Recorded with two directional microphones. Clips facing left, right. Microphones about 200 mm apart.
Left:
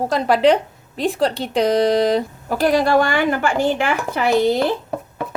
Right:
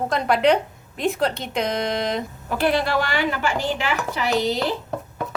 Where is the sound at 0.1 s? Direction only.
30° left (ahead or behind); by 4.3 s 50° left (ahead or behind).